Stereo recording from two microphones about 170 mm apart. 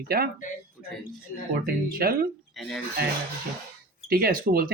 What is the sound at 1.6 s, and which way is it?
Speech, 60° right (ahead or behind).